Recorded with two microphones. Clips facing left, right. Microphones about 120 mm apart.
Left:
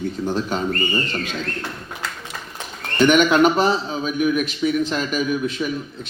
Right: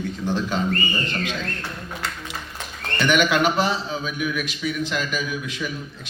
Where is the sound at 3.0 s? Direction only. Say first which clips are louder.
Left 5 dB; 45° left (ahead or behind).